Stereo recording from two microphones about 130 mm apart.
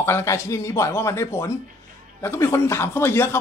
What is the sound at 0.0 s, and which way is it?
Speech, 20° left (ahead or behind).